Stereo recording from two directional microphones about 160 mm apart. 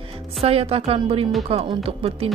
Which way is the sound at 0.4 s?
40° right (ahead or behind).